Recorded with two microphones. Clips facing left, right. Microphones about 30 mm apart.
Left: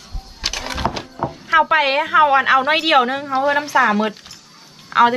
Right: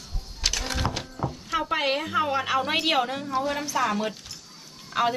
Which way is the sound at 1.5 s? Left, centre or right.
Left.